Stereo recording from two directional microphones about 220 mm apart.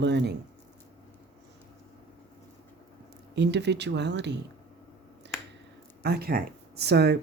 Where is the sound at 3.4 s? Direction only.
50° right (ahead or behind).